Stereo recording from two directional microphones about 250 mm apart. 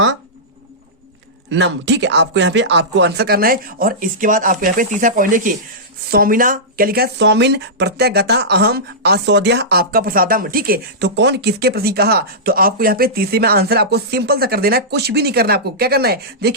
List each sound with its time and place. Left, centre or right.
1.5 s speech: right